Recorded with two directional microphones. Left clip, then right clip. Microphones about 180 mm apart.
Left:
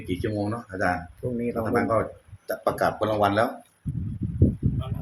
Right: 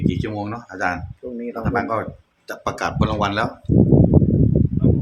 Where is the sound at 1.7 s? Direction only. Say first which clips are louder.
Right 2 dB; 35° right (ahead or behind).